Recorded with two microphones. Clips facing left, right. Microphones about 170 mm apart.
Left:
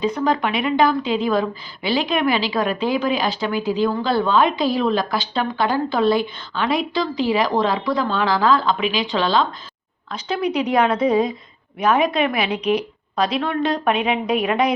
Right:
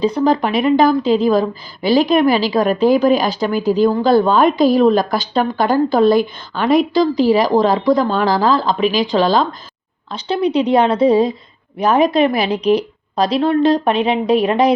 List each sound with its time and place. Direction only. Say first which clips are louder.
0.0 s a woman's voice: right 5 dB; 35° right (ahead or behind)
10.1 s a woman's voice: right 5 dB; 30° right (ahead or behind)